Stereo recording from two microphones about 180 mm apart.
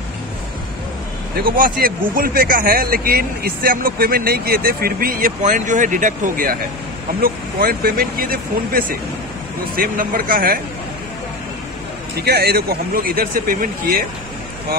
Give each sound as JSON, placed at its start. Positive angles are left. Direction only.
{"t": 1.3, "sound": "speech", "side_deg": -50}
{"t": 12.2, "sound": "speech", "side_deg": -60}